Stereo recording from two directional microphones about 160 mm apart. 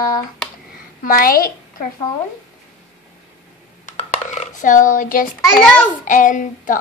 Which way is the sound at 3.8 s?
45° left (ahead or behind).